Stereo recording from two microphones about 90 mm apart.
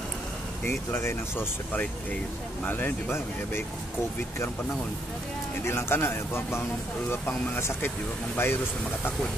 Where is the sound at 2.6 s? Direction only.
20° left (ahead or behind).